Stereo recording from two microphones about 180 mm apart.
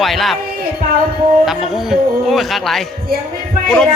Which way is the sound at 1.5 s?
Centre (ahead or behind).